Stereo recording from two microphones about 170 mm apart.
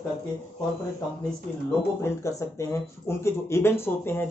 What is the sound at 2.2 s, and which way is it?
Speech, 20° left (ahead or behind).